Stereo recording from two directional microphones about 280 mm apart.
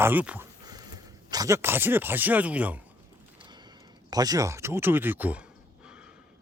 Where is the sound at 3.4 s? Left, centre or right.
Centre.